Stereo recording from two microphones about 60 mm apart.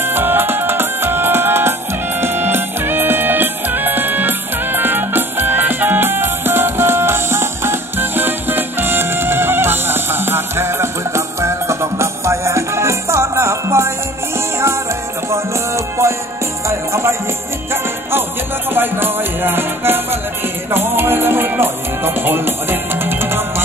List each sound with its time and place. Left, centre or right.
0.0 s music: right
15.3 s music: right
18.7 s music: right